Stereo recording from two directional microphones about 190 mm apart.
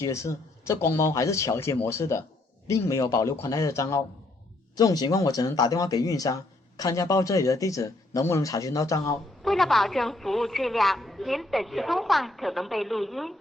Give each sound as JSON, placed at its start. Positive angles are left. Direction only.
{"t": 0.0, "sound": "speech", "side_deg": 15}
{"t": 9.4, "sound": "a woman's voice", "side_deg": 0}